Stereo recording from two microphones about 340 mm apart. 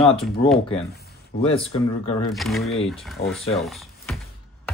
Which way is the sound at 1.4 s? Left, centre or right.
Centre.